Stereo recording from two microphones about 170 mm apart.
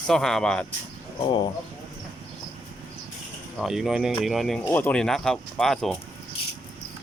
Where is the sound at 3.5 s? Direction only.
Centre (ahead or behind).